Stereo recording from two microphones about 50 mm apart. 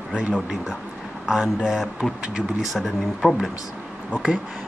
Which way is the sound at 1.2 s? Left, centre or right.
Centre.